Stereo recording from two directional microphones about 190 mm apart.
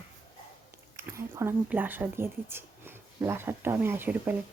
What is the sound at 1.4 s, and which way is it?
Speech, 10° right (ahead or behind).